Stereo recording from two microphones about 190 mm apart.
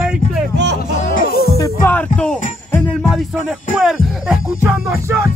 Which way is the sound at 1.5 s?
15° left (ahead or behind).